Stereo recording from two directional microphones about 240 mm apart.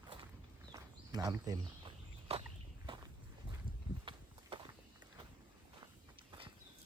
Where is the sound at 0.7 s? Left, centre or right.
Centre.